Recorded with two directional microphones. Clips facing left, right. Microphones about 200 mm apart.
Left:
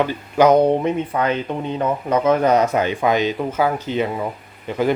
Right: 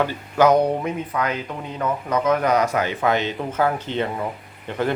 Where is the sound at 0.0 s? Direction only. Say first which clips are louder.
Left 2 dB; 20° left (ahead or behind).